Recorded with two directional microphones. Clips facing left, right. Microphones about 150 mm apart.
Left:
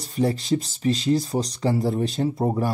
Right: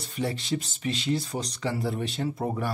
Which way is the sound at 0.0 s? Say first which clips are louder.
Left 7 dB; 35° left (ahead or behind).